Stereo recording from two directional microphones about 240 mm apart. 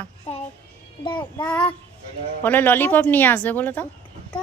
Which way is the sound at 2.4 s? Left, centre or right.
Centre.